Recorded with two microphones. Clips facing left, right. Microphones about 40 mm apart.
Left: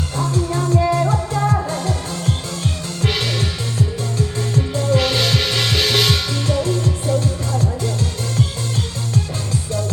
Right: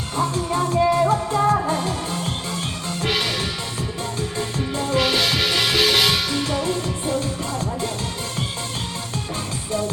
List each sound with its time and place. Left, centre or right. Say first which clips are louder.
0.2 s music: even; right
0.8 s music: right 2 dB; centre
1.6 s music: even; right
3.0 s music: left 2 dB; centre
4.7 s music: left 4 dB; centre
4.9 s music: right 1 dB; centre; by 7.9 s right